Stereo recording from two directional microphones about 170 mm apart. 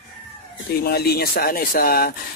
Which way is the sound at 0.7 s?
65° left (ahead or behind).